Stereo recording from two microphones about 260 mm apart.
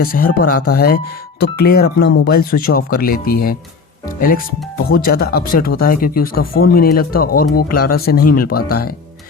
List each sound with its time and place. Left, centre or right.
0.0 s speech: left
0.5 s speech: left
0.8 s speech: left
4.9 s speech: left